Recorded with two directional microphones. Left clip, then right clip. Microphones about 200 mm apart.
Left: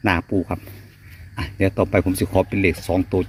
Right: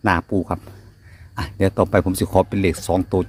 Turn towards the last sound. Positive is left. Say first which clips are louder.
# right 1 dB
turn(degrees=-20)  # may be behind; listen again after turning